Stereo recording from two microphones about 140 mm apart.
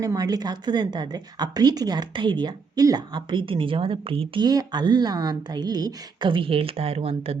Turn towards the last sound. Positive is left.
turn(degrees=-45)  # may be behind; listen again after turning